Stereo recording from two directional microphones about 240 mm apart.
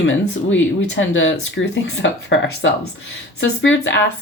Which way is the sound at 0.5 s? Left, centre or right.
Left.